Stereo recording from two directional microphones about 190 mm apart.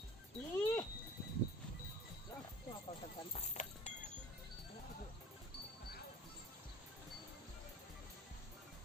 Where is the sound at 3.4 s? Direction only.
35° left (ahead or behind).